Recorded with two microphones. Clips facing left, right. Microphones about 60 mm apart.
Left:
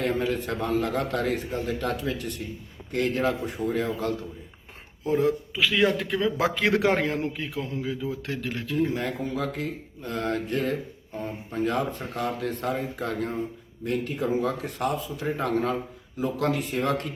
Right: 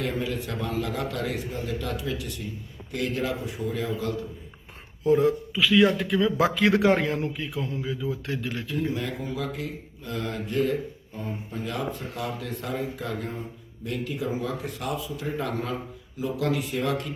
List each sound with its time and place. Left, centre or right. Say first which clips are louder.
0.0 s a man's voice: left 3 dB; left
5.5 s a man's voice: right 4 dB; left